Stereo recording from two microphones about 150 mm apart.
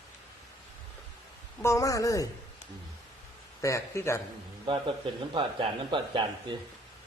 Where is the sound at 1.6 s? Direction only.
20° left (ahead or behind).